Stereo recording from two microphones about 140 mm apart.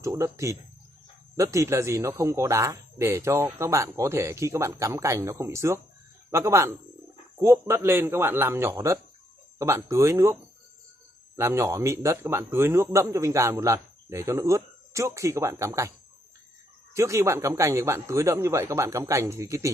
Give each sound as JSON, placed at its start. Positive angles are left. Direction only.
{"t": 0.0, "sound": "a man's voice", "side_deg": -20}
{"t": 11.3, "sound": "a man's voice", "side_deg": -20}
{"t": 16.9, "sound": "a man's voice", "side_deg": -20}